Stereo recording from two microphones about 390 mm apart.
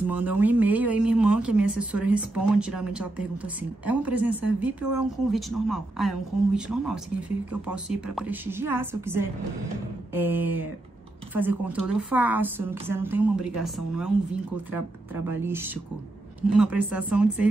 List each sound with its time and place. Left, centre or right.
0.0 s a woman's voice: centre
15.2 s a woman's voice: centre